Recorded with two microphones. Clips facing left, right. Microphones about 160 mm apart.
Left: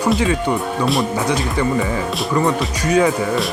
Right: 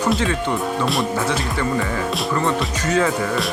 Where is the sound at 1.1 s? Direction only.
15° left (ahead or behind).